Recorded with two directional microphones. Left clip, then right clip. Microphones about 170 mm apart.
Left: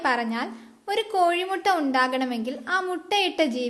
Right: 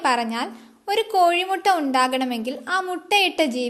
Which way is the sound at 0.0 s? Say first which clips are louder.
Right 3 dB; 30° right (ahead or behind).